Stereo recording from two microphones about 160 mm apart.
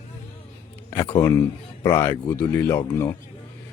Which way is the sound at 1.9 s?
15° left (ahead or behind).